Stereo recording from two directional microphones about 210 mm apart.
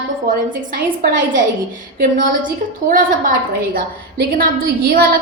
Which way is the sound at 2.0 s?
40° right (ahead or behind).